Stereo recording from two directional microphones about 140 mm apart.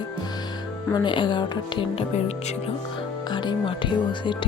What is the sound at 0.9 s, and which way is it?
Speech, 35° left (ahead or behind).